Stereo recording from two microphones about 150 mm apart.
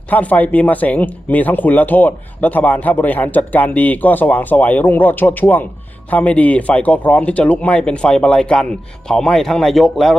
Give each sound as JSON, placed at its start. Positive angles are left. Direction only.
{"t": 0.1, "sound": "speech", "side_deg": 10}